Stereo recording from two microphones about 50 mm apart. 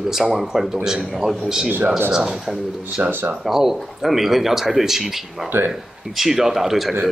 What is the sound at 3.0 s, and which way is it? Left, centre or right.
Speech, right.